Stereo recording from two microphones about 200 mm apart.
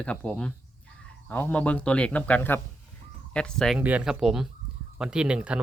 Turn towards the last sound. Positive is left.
turn(degrees=-5)  # may be behind; listen again after turning